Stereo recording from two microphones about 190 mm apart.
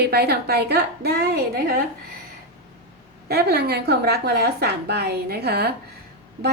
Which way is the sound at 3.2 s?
55° right (ahead or behind).